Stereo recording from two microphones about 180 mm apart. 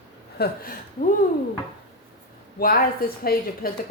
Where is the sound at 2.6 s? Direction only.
55° left (ahead or behind).